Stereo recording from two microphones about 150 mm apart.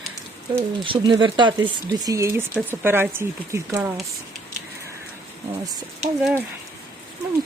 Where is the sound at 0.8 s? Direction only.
30° right (ahead or behind).